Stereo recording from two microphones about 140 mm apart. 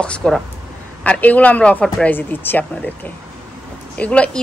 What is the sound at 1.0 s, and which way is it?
Speech, 10° left (ahead or behind).